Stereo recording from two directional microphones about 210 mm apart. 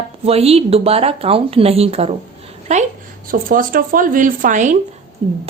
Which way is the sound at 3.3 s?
40° right (ahead or behind).